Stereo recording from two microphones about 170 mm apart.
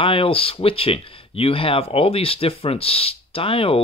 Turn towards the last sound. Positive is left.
turn(degrees=35)  # may be behind; listen again after turning